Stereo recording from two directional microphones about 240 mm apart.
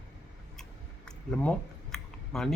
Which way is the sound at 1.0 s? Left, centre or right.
Centre.